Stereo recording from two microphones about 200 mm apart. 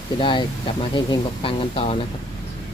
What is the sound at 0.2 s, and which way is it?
Speech, 25° left (ahead or behind).